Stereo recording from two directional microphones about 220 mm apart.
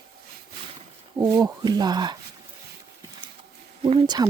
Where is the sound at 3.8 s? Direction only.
25° right (ahead or behind).